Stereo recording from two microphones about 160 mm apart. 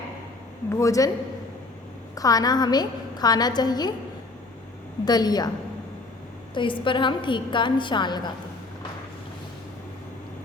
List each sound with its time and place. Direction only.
0.7 s a woman's voice: 20° left (ahead or behind)
2.1 s a woman's voice: 20° left (ahead or behind)
5.0 s a woman's voice: 25° left (ahead or behind)
6.5 s a woman's voice: 30° left (ahead or behind)